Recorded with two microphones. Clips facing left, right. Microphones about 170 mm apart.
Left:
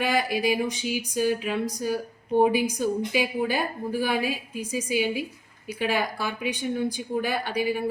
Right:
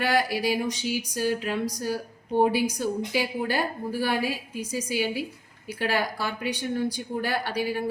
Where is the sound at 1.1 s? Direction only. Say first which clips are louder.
Left 3 dB; 15° left (ahead or behind).